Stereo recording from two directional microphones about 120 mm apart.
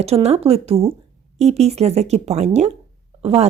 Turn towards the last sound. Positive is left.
turn(degrees=-55)  # may be behind; listen again after turning